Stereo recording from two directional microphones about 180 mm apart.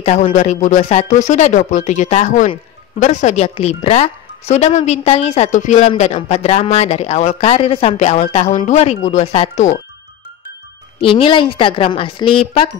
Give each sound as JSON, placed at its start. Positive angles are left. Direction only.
{"t": 0.0, "sound": "speech", "side_deg": 35}
{"t": 11.0, "sound": "a woman's voice", "side_deg": 30}